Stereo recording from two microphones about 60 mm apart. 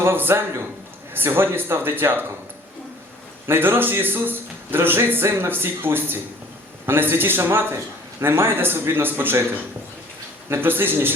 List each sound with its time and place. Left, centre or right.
0.0 s a man's voice: right
3.4 s a man's voice: right
10.5 s a man's voice: right